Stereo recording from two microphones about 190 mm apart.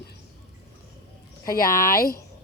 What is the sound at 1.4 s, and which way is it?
Speech, 50° left (ahead or behind).